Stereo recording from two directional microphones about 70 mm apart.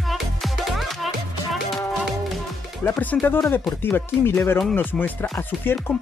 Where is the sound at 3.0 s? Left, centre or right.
Left.